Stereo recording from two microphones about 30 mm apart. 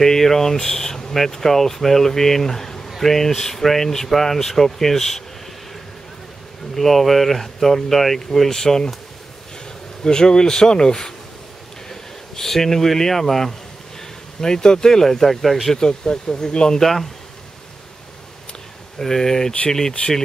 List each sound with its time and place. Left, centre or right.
0.0 s speech: centre
6.7 s speech: centre
8.5 s speech: left
10.0 s speech: left
11.9 s speech: centre
14.4 s speech: left; by 15.7 s centre
15.8 s speech: left
16.8 s speech: centre
18.9 s speech: centre
20.0 s speech: left